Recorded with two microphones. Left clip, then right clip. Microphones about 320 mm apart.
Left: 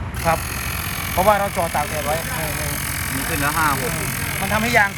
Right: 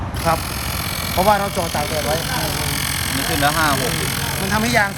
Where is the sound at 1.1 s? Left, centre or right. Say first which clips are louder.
Even; centre.